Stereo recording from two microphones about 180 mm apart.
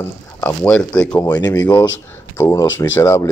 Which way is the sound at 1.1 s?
20° left (ahead or behind).